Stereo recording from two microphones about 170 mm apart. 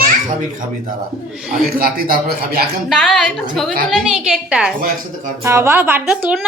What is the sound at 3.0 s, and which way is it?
A woman's voice, centre (ahead or behind).